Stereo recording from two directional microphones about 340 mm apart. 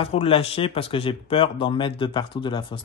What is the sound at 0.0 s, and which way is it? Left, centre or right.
Speech, centre.